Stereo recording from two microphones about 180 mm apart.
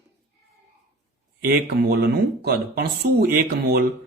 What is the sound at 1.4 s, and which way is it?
Speech, 60° right (ahead or behind).